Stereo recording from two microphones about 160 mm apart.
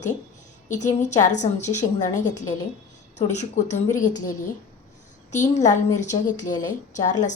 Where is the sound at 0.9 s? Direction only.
50° left (ahead or behind).